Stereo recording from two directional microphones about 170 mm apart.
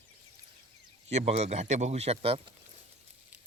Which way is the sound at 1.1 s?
40° right (ahead or behind).